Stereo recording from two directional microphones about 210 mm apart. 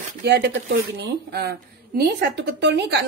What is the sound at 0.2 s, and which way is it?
A woman's voice, 55° right (ahead or behind).